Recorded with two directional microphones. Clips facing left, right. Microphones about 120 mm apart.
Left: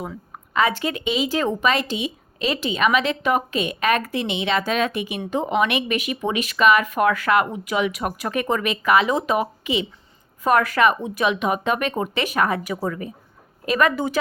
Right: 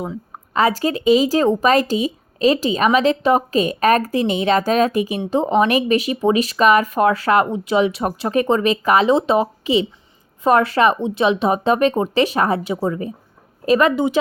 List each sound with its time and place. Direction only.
0.5 s speech: 35° right (ahead or behind)